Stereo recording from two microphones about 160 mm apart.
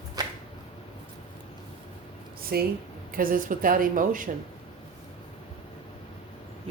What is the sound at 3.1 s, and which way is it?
Speech, 60° right (ahead or behind).